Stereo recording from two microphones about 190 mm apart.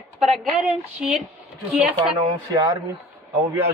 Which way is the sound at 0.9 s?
5° right (ahead or behind).